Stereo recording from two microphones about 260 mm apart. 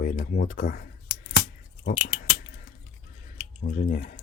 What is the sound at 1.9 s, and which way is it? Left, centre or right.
Speech, centre.